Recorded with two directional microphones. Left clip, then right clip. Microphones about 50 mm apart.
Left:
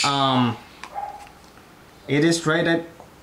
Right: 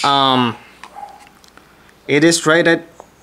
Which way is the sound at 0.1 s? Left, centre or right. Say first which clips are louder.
Right 7 dB; right.